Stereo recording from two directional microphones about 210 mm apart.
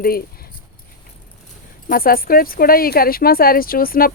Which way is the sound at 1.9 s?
45° left (ahead or behind).